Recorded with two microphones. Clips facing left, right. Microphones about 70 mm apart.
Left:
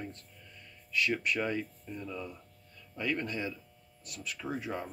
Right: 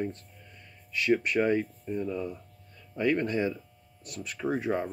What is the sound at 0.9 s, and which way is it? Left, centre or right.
Speech, right.